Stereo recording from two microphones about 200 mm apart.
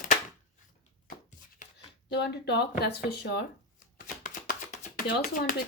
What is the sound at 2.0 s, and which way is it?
Speech, 55° left (ahead or behind).